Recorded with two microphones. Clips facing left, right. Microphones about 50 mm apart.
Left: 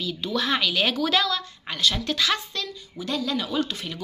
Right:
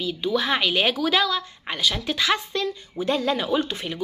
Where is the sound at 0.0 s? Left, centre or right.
Centre.